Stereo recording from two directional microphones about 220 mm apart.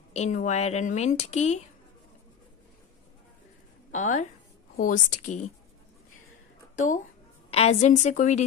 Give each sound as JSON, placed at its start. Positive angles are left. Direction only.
{"t": 0.1, "sound": "a woman's voice", "side_deg": 35}
{"t": 3.9, "sound": "a woman's voice", "side_deg": 35}
{"t": 6.7, "sound": "a sound", "side_deg": 35}
{"t": 7.5, "sound": "a woman's voice", "side_deg": 30}